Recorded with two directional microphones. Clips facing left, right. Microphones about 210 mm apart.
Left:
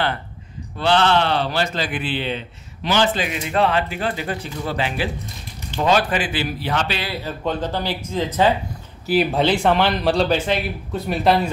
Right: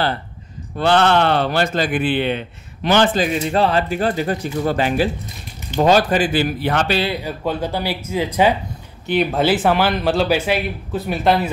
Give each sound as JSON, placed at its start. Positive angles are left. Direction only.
{"t": 0.7, "sound": "a man's voice", "side_deg": -50}
{"t": 3.3, "sound": "a man's voice", "side_deg": -35}
{"t": 7.2, "sound": "speech", "side_deg": -10}
{"t": 9.0, "sound": "speech", "side_deg": 0}